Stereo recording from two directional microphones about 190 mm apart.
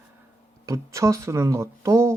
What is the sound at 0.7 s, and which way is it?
Speech, 15° right (ahead or behind).